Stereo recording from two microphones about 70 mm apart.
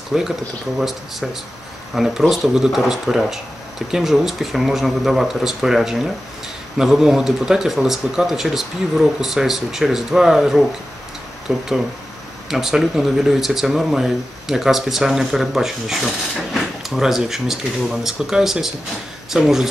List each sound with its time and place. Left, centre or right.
0.1 s speech: centre